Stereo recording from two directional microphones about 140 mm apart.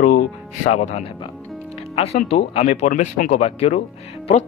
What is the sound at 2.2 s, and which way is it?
Speech, 50° left (ahead or behind).